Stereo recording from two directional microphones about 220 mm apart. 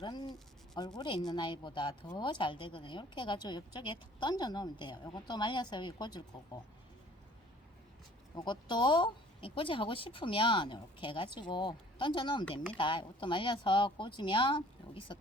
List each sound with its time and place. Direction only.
0.0 s speech: 20° left (ahead or behind)
8.4 s speech: 20° left (ahead or behind)